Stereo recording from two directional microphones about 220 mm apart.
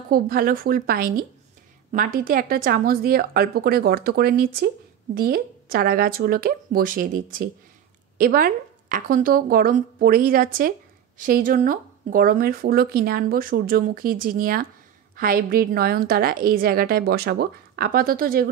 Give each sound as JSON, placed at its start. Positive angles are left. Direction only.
{"t": 0.1, "sound": "a woman's voice", "side_deg": -40}